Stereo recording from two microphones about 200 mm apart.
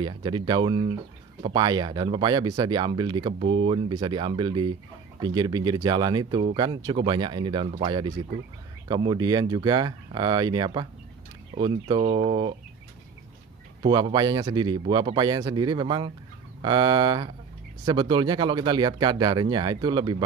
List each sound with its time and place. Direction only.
0.0 s speech: 25° right (ahead or behind)
13.8 s speech: 20° right (ahead or behind)